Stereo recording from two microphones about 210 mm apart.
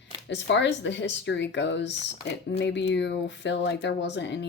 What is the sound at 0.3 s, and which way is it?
Speech, 55° left (ahead or behind).